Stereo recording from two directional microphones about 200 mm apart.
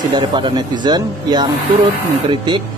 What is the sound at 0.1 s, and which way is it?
Speech, 20° right (ahead or behind).